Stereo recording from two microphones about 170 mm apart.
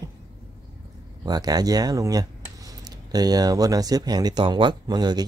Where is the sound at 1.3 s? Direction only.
20° right (ahead or behind).